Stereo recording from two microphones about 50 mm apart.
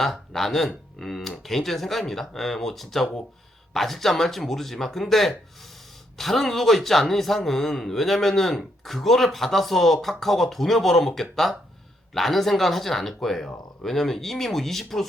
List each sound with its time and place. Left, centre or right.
0.0 s a man's voice: centre